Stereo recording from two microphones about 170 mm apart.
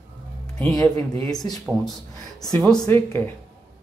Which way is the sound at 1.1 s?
20° left (ahead or behind).